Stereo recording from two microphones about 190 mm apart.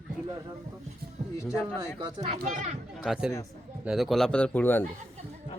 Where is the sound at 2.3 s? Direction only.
40° right (ahead or behind).